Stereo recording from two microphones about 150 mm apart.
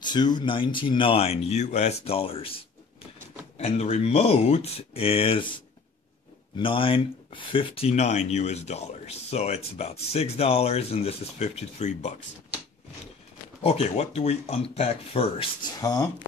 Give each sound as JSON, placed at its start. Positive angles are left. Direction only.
{"t": 0.0, "sound": "speech", "side_deg": 30}
{"t": 13.6, "sound": "speech", "side_deg": 40}
{"t": 15.8, "sound": "speech", "side_deg": 25}